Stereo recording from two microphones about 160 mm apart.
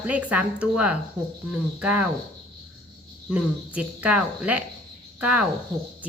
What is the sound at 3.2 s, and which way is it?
Speech, 5° right (ahead or behind).